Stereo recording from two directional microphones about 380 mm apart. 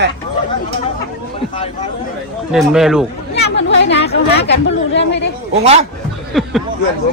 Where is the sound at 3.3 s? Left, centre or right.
Left.